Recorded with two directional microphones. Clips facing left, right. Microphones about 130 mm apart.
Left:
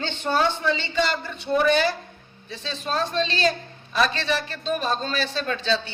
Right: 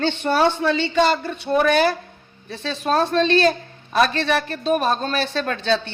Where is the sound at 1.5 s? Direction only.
50° right (ahead or behind).